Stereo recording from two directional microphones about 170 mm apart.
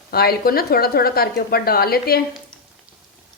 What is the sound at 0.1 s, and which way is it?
Speech, 65° left (ahead or behind).